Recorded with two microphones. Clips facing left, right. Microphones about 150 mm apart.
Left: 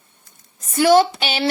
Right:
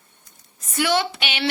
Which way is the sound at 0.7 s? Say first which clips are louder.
Left 8 dB; 40° left (ahead or behind).